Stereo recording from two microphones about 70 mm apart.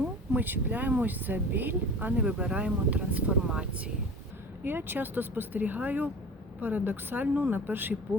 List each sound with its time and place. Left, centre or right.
0.0 s speech: right
4.6 s speech: right